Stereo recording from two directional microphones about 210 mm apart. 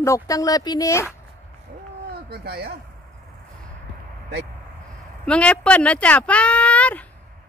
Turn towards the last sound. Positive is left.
turn(degrees=5)  # may be behind; listen again after turning